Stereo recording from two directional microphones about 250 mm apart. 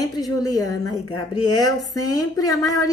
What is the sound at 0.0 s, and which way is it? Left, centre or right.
Speech, centre.